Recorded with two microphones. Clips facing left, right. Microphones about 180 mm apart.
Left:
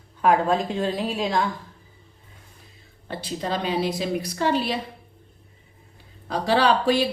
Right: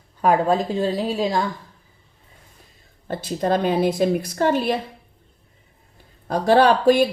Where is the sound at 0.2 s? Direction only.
40° right (ahead or behind).